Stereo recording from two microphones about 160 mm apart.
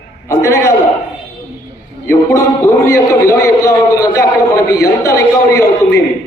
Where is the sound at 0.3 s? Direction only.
20° left (ahead or behind).